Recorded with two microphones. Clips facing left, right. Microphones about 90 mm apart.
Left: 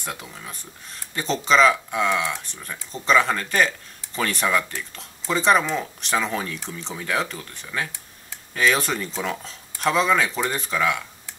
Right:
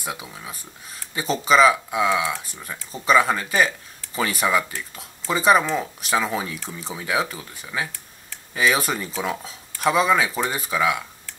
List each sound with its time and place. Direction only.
0.0 s speech: 5° right (ahead or behind)